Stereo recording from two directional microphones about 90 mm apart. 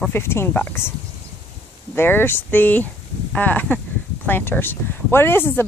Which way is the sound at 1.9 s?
25° left (ahead or behind).